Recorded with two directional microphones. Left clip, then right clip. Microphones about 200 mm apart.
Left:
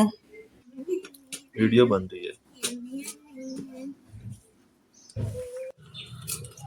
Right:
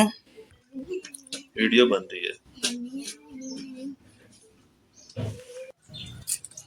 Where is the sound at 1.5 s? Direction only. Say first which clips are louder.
Right 1 dB; 40° left (ahead or behind).